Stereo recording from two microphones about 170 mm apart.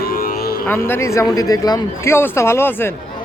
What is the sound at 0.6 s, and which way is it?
Speech, 15° left (ahead or behind).